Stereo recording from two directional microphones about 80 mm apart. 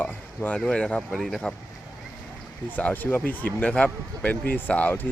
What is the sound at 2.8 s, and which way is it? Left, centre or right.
Speech, centre.